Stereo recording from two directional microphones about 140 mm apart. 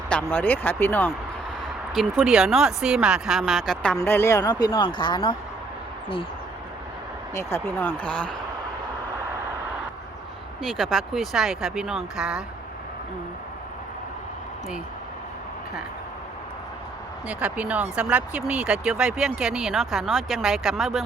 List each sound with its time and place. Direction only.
0.1 s speech: 10° left (ahead or behind)
1.9 s speech: centre (ahead or behind)
3.9 s speech: 15° left (ahead or behind); by 5.4 s 35° left (ahead or behind)
7.3 s speech: 15° left (ahead or behind)
10.6 s speech: centre (ahead or behind)
17.2 s speech: 10° right (ahead or behind)